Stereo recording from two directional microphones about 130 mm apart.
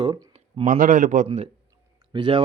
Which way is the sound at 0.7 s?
90° right.